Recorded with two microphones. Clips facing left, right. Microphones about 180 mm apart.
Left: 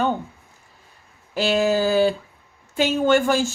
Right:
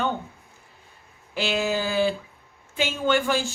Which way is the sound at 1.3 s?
40° left (ahead or behind).